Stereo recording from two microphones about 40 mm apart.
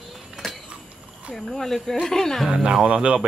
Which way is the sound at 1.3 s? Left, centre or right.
Centre.